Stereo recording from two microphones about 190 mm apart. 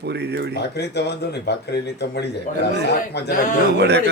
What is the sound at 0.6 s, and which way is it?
Speech, 60° left (ahead or behind).